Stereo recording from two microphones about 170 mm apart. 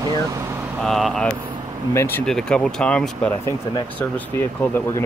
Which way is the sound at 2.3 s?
5° left (ahead or behind).